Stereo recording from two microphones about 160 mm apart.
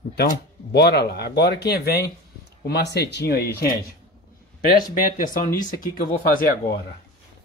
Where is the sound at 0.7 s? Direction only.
90° left; by 3.7 s 75° left (ahead or behind).